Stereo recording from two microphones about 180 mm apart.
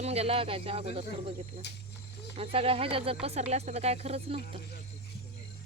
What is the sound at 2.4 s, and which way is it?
Speech, 30° right (ahead or behind).